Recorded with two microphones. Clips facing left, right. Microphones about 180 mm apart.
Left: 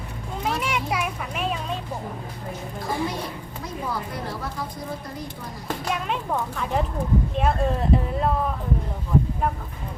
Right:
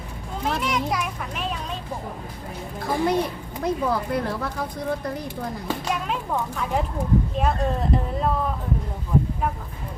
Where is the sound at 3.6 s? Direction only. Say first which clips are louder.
Right 7 dB; 60° right (ahead or behind).